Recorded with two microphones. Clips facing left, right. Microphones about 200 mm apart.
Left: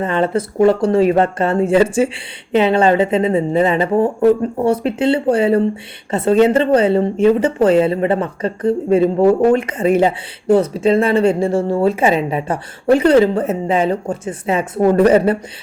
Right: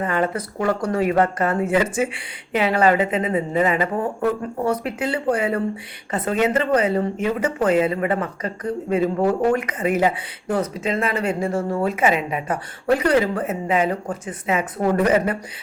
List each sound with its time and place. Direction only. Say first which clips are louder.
0.0 s a woman's voice: left 5 dB; 25° left (ahead or behind)